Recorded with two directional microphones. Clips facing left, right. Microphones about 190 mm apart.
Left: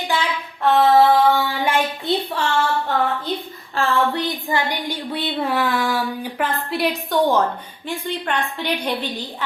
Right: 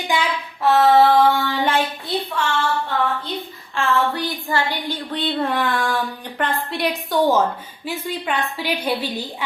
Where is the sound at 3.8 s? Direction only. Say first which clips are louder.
Left 1 dB; 40° left (ahead or behind).